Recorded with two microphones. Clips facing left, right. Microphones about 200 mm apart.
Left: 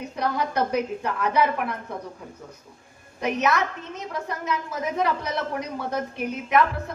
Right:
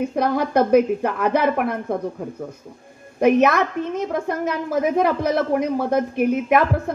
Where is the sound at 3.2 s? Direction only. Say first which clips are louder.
Right 8 dB; 50° right (ahead or behind).